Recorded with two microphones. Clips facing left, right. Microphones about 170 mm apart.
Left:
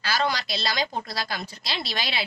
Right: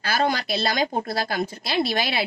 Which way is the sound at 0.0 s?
50° right (ahead or behind).